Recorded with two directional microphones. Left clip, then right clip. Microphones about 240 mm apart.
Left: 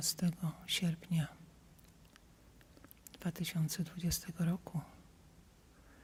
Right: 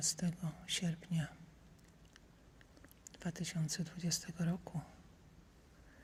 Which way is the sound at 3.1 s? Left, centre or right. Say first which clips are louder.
Left 2 dB; left.